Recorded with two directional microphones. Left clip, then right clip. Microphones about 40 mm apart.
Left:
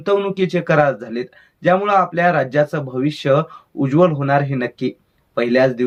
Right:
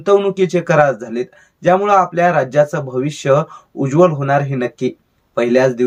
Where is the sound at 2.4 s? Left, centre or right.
Right.